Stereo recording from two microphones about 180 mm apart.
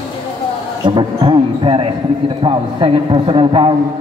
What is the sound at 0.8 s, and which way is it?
A man's voice, 25° right (ahead or behind).